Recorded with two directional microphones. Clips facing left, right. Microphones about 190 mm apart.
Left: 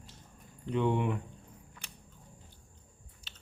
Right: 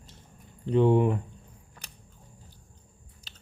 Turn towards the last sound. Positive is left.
turn(degrees=-40)  # may be behind; listen again after turning